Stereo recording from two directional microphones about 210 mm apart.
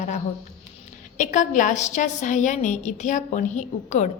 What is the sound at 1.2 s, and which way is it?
A woman's voice, 35° left (ahead or behind).